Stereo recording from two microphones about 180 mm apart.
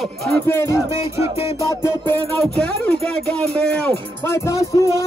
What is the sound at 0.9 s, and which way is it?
Music, 15° right (ahead or behind).